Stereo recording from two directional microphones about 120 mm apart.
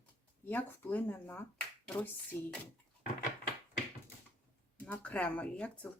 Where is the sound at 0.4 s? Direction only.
15° left (ahead or behind).